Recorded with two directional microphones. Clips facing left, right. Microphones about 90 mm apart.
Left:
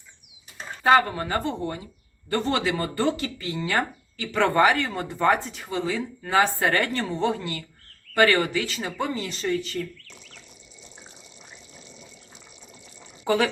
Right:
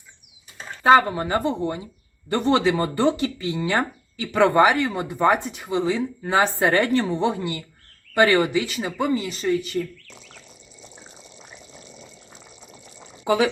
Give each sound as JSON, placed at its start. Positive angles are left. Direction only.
{"t": 0.9, "sound": "speech", "side_deg": -20}
{"t": 13.2, "sound": "speech", "side_deg": -10}